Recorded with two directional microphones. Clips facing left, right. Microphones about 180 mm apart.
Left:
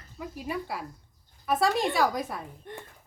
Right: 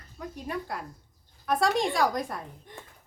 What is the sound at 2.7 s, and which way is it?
Speech, 60° left (ahead or behind).